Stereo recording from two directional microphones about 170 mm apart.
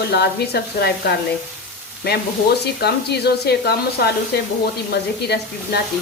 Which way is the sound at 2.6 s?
75° left (ahead or behind).